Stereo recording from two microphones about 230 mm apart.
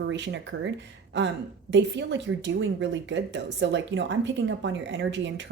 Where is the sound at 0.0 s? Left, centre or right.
Right.